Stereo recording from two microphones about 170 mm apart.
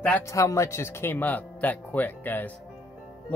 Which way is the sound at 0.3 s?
20° left (ahead or behind).